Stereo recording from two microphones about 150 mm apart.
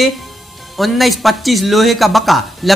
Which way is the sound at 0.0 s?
Centre (ahead or behind).